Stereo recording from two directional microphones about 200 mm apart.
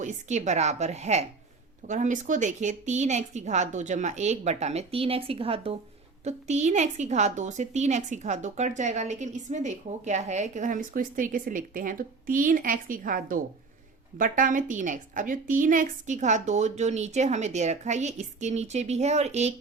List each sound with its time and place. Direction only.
0.0 s a woman's voice: 35° right (ahead or behind)